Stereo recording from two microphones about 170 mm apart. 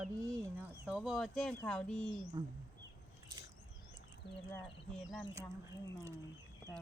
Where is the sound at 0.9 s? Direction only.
5° right (ahead or behind).